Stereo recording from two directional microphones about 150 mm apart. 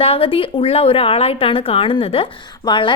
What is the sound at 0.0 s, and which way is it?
Speech, 40° left (ahead or behind).